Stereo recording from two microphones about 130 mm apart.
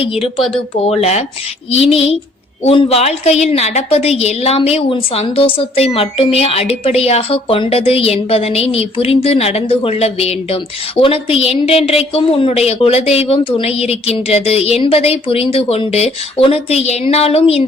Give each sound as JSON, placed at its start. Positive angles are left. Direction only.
{"t": 0.0, "sound": "a woman's voice", "side_deg": 45}